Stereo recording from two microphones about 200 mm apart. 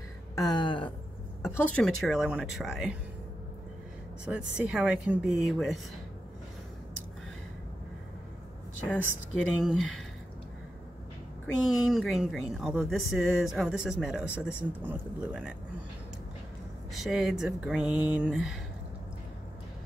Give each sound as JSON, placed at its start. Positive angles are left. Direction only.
{"t": 0.4, "sound": "a sound", "side_deg": 20}
{"t": 1.8, "sound": "a woman's voice", "side_deg": 0}
{"t": 4.3, "sound": "a woman's voice", "side_deg": -5}
{"t": 9.4, "sound": "a woman's voice", "side_deg": 0}
{"t": 11.4, "sound": "a woman's voice", "side_deg": 0}
{"t": 16.9, "sound": "a woman's voice", "side_deg": 0}